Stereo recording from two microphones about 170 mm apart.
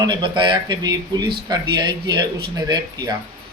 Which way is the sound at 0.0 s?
25° right (ahead or behind).